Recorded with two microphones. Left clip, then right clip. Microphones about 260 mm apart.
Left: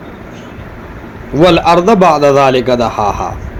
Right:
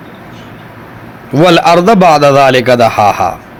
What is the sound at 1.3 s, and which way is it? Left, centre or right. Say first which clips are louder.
A man's voice: right 2 dB; right.